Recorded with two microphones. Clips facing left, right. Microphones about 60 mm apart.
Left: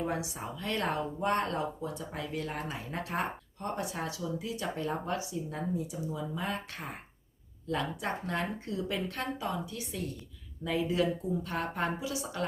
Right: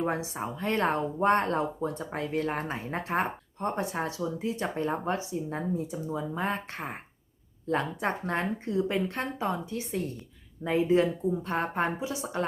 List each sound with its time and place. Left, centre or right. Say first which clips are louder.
0.0 s speech: right 4 dB; right